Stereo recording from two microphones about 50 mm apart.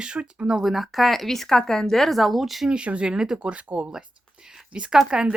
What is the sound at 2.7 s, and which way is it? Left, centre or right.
Speech, right.